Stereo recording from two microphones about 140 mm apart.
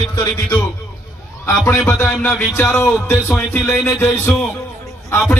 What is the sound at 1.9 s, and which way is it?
Music, 20° left (ahead or behind).